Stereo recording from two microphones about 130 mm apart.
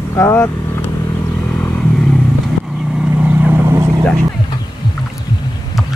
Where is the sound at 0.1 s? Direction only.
20° left (ahead or behind).